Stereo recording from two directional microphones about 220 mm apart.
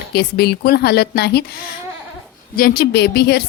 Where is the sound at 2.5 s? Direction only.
45° left (ahead or behind).